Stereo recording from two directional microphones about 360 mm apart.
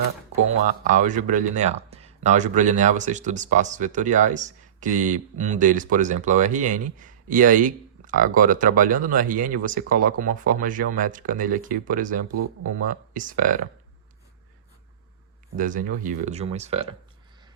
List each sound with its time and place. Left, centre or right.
0.7 s speech: centre
15.5 s speech: right